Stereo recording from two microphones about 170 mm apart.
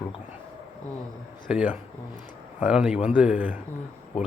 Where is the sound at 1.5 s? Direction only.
10° right (ahead or behind).